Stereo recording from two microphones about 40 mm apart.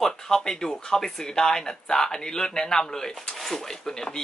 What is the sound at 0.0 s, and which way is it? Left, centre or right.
Speech, centre.